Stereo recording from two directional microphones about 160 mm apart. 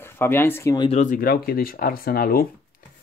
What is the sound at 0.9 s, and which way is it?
Speech, 50° left (ahead or behind).